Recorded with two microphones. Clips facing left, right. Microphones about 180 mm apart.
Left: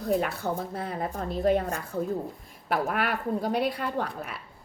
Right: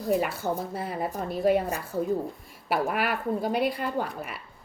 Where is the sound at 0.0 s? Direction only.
Centre (ahead or behind).